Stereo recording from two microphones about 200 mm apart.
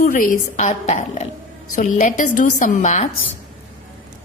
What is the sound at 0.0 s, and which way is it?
A woman's voice, 45° left (ahead or behind).